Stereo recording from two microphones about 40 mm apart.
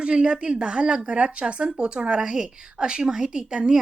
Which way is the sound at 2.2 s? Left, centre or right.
Centre.